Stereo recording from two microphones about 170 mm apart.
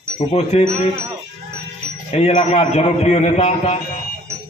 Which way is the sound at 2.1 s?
40° left (ahead or behind).